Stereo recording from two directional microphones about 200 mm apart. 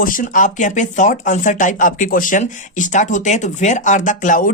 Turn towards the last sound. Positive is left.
turn(degrees=40)  # may be behind; listen again after turning